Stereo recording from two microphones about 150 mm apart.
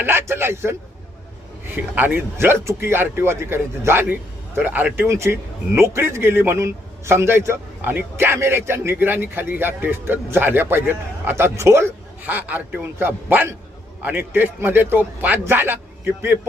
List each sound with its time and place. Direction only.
0.0 s speech: 15° right (ahead or behind)